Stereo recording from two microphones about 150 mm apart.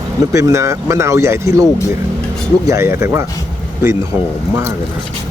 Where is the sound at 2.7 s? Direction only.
20° right (ahead or behind).